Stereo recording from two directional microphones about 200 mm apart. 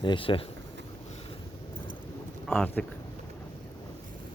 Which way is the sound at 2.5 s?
5° left (ahead or behind).